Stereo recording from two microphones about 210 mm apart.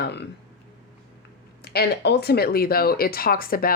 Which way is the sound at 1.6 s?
50° left (ahead or behind).